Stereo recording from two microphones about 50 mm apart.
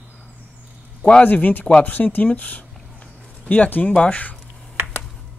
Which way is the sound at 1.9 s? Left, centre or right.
Left.